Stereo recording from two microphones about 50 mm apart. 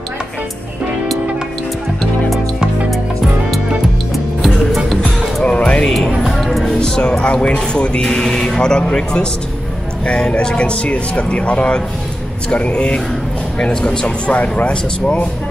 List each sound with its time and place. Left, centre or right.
5.4 s music: left
5.9 s music: centre
6.8 s speech: centre